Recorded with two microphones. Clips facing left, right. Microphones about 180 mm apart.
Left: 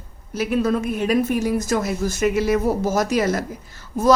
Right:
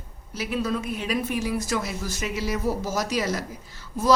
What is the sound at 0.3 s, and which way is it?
A woman's voice, 50° left (ahead or behind).